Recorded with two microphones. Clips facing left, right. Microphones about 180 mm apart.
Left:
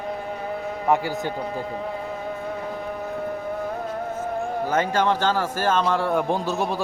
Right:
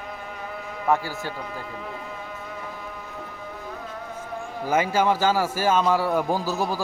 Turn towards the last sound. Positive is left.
turn(degrees=0)  # may be behind; listen again after turning